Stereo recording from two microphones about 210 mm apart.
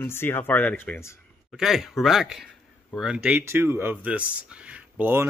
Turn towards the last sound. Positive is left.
turn(degrees=-10)  # may be behind; listen again after turning